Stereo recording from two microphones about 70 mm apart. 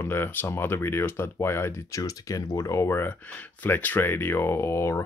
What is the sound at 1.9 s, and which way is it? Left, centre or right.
Speech, left.